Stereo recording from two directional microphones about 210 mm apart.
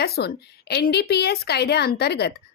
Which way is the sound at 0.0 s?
50° left (ahead or behind).